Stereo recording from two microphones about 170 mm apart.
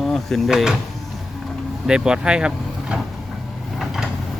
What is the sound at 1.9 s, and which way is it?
Speech, 5° right (ahead or behind).